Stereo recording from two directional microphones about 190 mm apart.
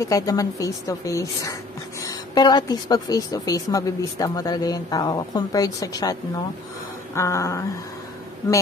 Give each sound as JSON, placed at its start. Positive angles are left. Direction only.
{"t": 0.0, "sound": "a woman's voice", "side_deg": 20}
{"t": 7.2, "sound": "a woman's voice", "side_deg": 15}